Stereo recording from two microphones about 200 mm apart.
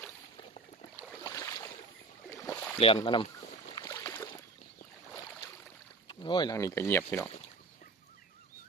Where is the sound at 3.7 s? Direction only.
15° left (ahead or behind).